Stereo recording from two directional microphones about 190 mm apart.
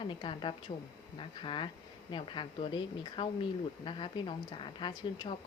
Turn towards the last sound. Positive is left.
turn(degrees=25)  # may be behind; listen again after turning